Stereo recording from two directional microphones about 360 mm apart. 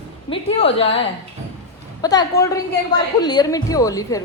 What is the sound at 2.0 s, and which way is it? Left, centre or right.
A woman's voice, centre.